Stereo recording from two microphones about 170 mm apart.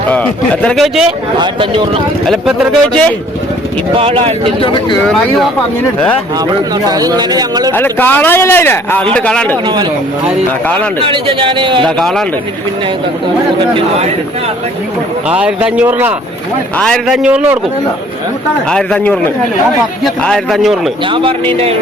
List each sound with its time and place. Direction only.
0.1 s a man's voice: 10° left (ahead or behind)
1.4 s a man's voice: 30° right (ahead or behind)
2.2 s a man's voice: centre (ahead or behind)
3.9 s speech: 35° right (ahead or behind)
4.6 s speech: 30° left (ahead or behind)
6.5 s a man's voice: 25° right (ahead or behind)
7.7 s a man's voice: 10° left (ahead or behind)
11.0 s a man's voice: 30° right (ahead or behind)
11.9 s a man's voice: 5° left (ahead or behind)
15.3 s speech: 5° right (ahead or behind)
16.7 s a man's voice: 5° left (ahead or behind)
17.2 s speech: 10° right (ahead or behind)
18.7 s a man's voice: 5° left (ahead or behind)
21.1 s speech: 30° right (ahead or behind)